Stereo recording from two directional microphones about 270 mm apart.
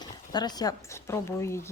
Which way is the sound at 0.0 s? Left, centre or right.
Centre.